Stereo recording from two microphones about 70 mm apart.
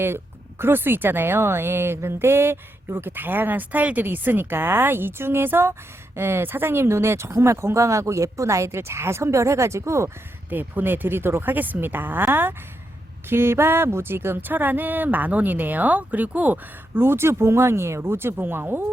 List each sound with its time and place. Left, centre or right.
0.6 s a woman's voice: right
10.5 s speech: right
17.0 s a woman's voice: right